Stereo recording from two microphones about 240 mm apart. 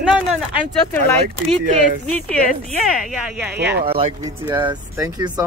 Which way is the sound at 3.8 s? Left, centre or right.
Right.